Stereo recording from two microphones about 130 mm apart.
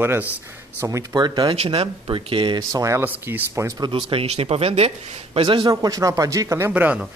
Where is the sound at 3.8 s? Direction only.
45° right (ahead or behind).